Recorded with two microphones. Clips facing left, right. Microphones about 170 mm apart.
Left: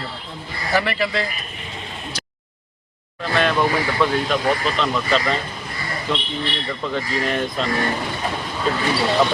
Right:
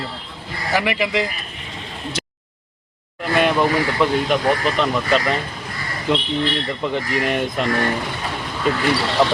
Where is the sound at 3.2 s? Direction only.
15° right (ahead or behind).